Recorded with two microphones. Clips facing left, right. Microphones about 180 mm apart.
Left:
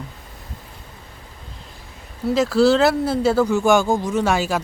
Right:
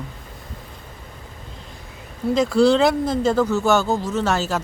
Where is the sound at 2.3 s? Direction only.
5° left (ahead or behind).